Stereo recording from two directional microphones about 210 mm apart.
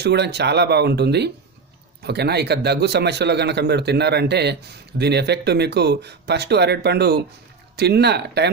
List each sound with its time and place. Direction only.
0.0 s speech: 50° right (ahead or behind)